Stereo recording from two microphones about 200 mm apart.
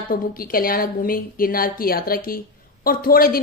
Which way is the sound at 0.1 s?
45° left (ahead or behind).